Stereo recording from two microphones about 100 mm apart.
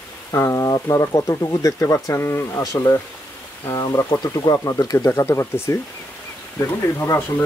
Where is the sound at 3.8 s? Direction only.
40° left (ahead or behind); by 7.2 s 25° left (ahead or behind).